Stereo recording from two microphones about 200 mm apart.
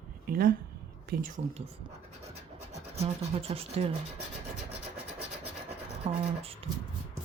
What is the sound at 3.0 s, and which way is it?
Speech, 30° right (ahead or behind).